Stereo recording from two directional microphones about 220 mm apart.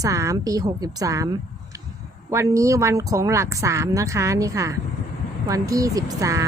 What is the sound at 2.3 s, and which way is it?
Speech, 15° right (ahead or behind).